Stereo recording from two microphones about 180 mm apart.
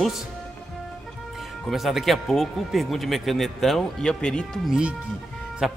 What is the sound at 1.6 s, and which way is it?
Speech, centre (ahead or behind).